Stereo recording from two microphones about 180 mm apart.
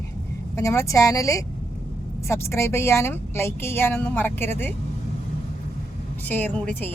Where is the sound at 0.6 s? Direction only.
15° left (ahead or behind).